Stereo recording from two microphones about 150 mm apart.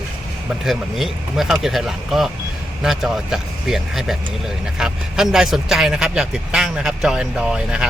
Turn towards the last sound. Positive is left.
turn(degrees=-5)  # may be behind; listen again after turning